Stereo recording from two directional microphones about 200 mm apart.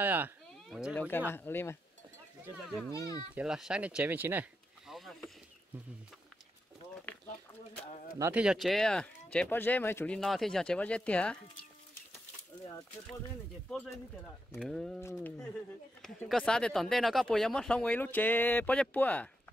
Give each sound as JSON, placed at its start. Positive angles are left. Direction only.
{"t": 0.0, "sound": "a sound", "side_deg": -10}
{"t": 0.7, "sound": "speech", "side_deg": -5}
{"t": 0.9, "sound": "speech", "side_deg": 10}
{"t": 2.9, "sound": "speech", "side_deg": 15}
{"t": 3.3, "sound": "speech", "side_deg": -5}
{"t": 8.2, "sound": "speech", "side_deg": -10}
{"t": 13.7, "sound": "speech", "side_deg": 0}
{"t": 15.0, "sound": "speech", "side_deg": 15}
{"t": 16.0, "sound": "speech", "side_deg": 0}